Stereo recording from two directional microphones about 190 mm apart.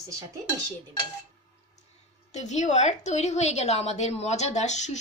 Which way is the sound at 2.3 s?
40° left (ahead or behind).